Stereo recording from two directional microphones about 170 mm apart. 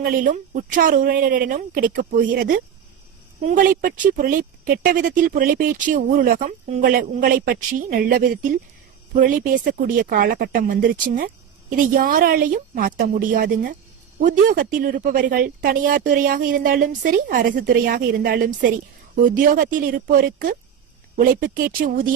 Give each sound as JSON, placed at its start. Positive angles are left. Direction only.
{"t": 0.0, "sound": "speech", "side_deg": -55}